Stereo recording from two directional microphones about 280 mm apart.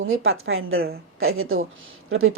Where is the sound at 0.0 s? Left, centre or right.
Right.